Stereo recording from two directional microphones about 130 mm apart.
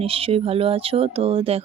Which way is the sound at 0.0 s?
50° right (ahead or behind).